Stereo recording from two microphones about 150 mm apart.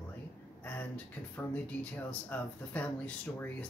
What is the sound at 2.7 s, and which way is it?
Speech, 10° left (ahead or behind).